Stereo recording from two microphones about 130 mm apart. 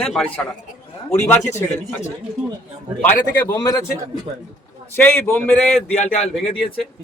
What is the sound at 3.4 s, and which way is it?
Speech, 30° left (ahead or behind).